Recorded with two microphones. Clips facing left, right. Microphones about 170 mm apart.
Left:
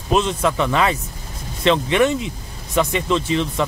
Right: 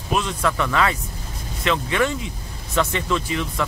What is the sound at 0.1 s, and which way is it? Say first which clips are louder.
Speech: left 4 dB; 25° left (ahead or behind).